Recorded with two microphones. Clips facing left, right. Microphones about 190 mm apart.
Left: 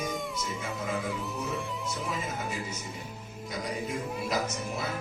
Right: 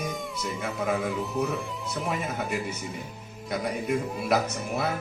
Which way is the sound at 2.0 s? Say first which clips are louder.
Right 7 dB; 60° right (ahead or behind).